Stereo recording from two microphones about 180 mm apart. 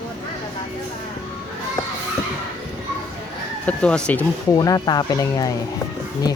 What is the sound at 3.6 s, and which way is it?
Speech, 5° left (ahead or behind).